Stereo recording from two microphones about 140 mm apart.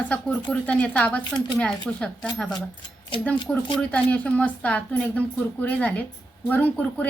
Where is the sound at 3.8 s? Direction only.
10° left (ahead or behind).